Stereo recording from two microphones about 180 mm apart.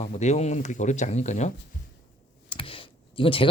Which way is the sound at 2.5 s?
30° left (ahead or behind).